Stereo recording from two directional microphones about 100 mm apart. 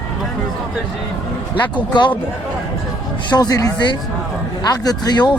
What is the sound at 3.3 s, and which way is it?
Speech, 40° left (ahead or behind).